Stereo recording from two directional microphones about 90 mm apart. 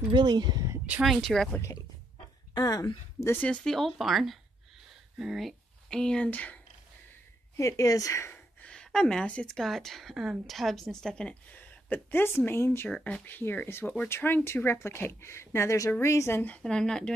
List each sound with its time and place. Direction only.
0.1 s speech: 55° right (ahead or behind)
1.0 s speech: 5° left (ahead or behind)
2.5 s speech: 45° left (ahead or behind)
3.3 s speech: 10° left (ahead or behind)
5.9 s speech: 10° left (ahead or behind)
7.5 s speech: 35° left (ahead or behind)
8.5 s speech: 10° left (ahead or behind); by 12.9 s 25° left (ahead or behind)
12.9 s speech: 15° left (ahead or behind)
16.5 s speech: 10° left (ahead or behind)